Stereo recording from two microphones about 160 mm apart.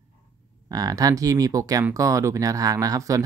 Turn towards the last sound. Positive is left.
turn(degrees=-20)  # may be behind; listen again after turning